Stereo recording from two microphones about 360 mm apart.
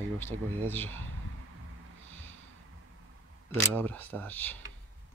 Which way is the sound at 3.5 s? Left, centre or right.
Centre.